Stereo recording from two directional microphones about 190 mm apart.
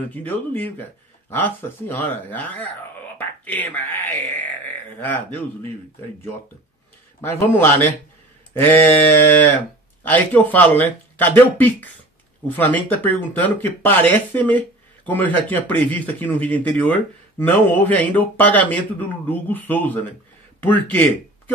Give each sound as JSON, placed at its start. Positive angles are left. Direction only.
{"t": 0.1, "sound": "speech", "side_deg": 10}
{"t": 7.2, "sound": "speech", "side_deg": 10}
{"t": 8.6, "sound": "speech", "side_deg": 10}
{"t": 10.0, "sound": "speech", "side_deg": 10}